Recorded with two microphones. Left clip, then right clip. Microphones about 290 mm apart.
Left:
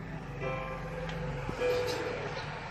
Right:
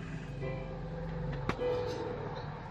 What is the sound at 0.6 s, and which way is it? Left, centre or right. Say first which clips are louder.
Music: left 5 dB; left.